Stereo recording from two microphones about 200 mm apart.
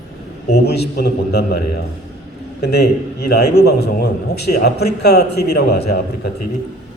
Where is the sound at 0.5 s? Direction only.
55° left (ahead or behind).